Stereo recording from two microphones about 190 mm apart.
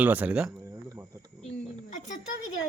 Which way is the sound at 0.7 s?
15° right (ahead or behind).